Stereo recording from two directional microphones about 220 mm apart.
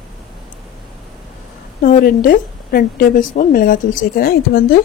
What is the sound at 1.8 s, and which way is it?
Speech, 40° left (ahead or behind).